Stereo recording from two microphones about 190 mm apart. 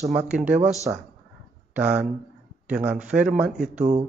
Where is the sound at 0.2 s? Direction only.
5° right (ahead or behind).